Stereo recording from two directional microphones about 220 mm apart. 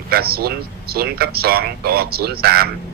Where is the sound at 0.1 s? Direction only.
45° right (ahead or behind).